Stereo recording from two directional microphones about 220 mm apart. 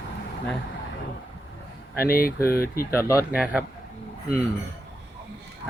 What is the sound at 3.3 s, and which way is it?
Speech, 5° right (ahead or behind).